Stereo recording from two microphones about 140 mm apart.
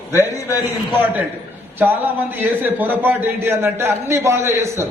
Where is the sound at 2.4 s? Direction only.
15° right (ahead or behind).